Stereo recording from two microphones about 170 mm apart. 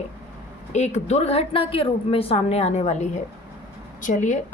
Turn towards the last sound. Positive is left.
turn(degrees=45)  # may be behind; listen again after turning